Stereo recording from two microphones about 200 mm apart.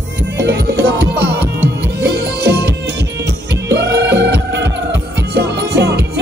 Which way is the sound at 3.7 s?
60° right (ahead or behind).